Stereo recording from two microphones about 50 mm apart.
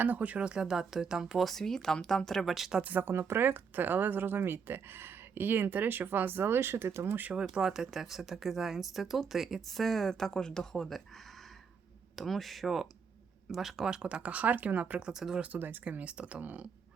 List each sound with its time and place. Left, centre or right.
0.0 s speech: right; by 2.7 s centre
2.8 s speech: right
3.1 s speech: right
7.3 s speech: centre
12.1 s speech: centre
13.9 s speech: right
15.5 s speech: right
15.8 s speech: right